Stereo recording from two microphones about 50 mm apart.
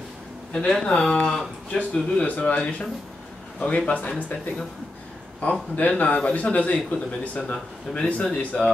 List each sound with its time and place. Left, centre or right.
0.5 s a man's voice: left
5.4 s a man's voice: left